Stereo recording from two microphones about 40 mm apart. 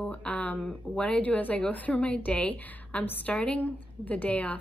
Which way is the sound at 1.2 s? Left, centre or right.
Left.